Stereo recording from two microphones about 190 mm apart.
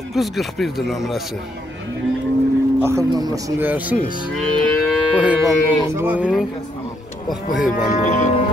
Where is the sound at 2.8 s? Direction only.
15° right (ahead or behind).